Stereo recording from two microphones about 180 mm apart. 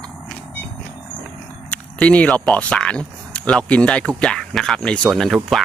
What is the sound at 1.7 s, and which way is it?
Speech, 5° left (ahead or behind).